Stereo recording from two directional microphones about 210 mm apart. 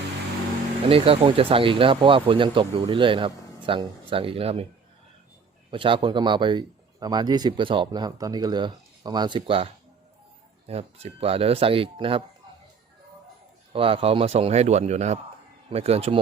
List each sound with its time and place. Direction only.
0.9 s speech: 25° right (ahead or behind)
5.7 s speech: 25° right (ahead or behind)
10.7 s speech: 30° right (ahead or behind)
13.7 s speech: 25° right (ahead or behind)